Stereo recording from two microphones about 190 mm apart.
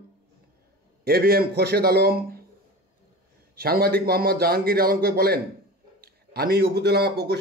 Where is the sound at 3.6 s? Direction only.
55° right (ahead or behind).